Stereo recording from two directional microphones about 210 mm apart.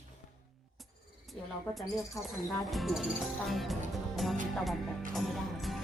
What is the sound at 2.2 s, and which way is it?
Speech, 15° left (ahead or behind).